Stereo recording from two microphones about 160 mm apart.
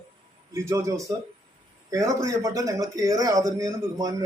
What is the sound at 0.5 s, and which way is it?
Speech, 20° right (ahead or behind).